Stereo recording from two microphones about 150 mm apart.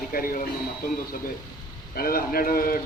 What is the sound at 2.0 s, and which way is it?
Speech, 80° left.